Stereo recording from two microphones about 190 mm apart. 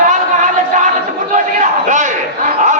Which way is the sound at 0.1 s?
40° right (ahead or behind).